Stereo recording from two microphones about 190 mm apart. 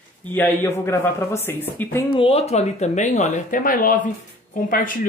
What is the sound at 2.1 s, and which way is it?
Speech, 30° left (ahead or behind).